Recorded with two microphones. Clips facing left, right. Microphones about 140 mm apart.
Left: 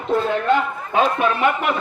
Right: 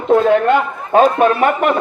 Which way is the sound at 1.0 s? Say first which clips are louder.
Right 6 dB; 45° right (ahead or behind).